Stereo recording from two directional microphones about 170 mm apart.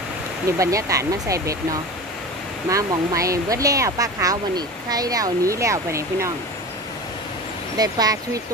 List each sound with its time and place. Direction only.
0.5 s speech: 20° right (ahead or behind)
7.7 s speech: 20° right (ahead or behind)